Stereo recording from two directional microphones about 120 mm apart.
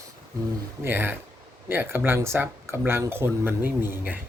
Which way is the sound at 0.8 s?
20° right (ahead or behind).